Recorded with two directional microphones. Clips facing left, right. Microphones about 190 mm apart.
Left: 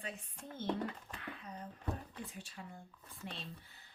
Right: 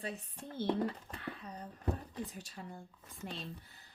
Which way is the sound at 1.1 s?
35° right (ahead or behind).